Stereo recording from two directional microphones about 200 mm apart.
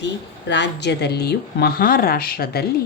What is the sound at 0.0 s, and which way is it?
A woman's voice, 60° left (ahead or behind).